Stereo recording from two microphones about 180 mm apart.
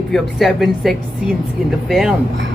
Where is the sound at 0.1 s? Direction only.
Centre (ahead or behind).